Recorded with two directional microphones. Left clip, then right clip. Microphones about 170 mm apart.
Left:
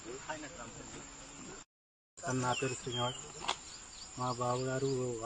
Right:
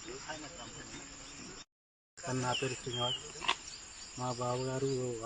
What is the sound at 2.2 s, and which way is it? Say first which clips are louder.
Speech: even; centre (ahead or behind).